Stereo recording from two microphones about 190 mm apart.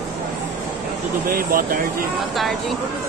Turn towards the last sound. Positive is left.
turn(degrees=-50)  # may be behind; listen again after turning